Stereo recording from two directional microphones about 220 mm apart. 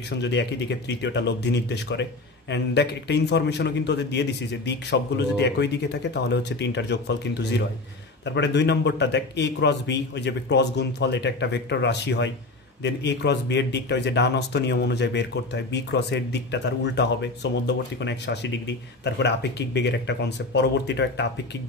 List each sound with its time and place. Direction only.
0.1 s speech: 50° left (ahead or behind)